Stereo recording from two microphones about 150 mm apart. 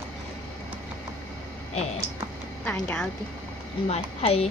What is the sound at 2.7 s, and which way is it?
Speech, 10° left (ahead or behind).